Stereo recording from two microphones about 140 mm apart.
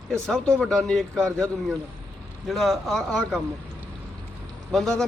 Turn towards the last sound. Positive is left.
turn(degrees=5)  # may be behind; listen again after turning